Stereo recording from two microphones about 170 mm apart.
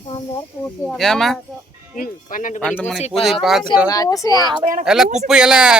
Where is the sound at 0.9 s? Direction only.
Centre (ahead or behind).